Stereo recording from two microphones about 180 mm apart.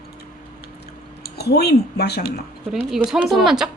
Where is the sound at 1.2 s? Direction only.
65° left (ahead or behind).